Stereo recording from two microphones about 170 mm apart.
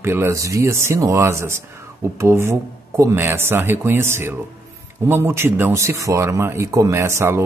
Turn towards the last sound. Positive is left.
turn(degrees=-15)  # may be behind; listen again after turning